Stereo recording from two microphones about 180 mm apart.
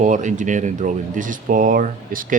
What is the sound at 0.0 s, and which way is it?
Speech, 45° right (ahead or behind).